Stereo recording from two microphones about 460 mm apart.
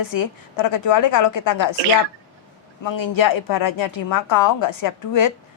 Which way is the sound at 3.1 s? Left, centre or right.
Left.